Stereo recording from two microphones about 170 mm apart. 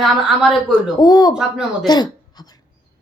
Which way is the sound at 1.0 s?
25° left (ahead or behind).